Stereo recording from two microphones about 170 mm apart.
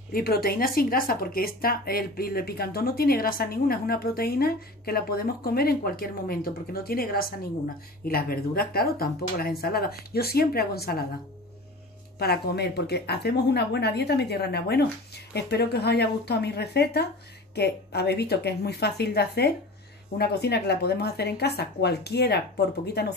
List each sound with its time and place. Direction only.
0.1 s speech: 65° left (ahead or behind)
12.2 s speech: 70° left (ahead or behind)